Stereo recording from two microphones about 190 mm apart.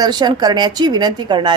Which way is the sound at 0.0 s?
20° right (ahead or behind).